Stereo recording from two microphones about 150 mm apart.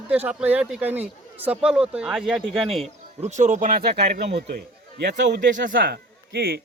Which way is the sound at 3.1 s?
50° right (ahead or behind).